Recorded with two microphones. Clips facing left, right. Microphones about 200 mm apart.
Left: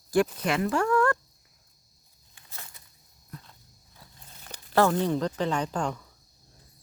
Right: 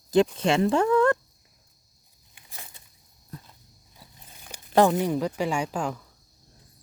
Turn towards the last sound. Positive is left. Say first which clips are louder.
# right 1 dB
turn(degrees=-5)  # may be behind; listen again after turning